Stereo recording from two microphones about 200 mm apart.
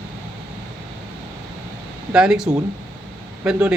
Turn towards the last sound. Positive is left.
turn(degrees=-5)  # may be behind; listen again after turning